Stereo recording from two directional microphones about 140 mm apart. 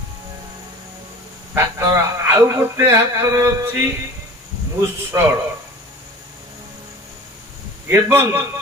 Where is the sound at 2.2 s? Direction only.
15° right (ahead or behind).